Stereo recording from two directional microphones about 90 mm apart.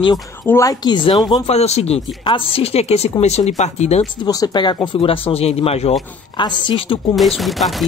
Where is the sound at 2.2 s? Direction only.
80° left.